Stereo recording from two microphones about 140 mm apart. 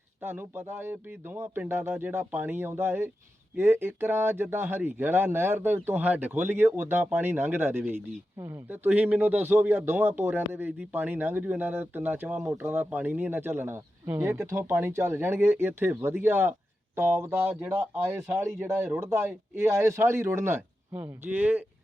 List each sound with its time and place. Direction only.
0.2 s speech: 15° right (ahead or behind)